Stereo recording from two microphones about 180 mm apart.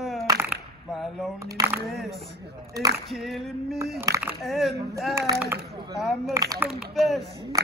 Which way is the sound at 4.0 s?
15° right (ahead or behind).